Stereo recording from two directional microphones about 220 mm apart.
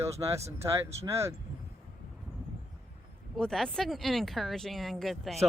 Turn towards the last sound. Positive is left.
turn(degrees=0)  # may be behind; listen again after turning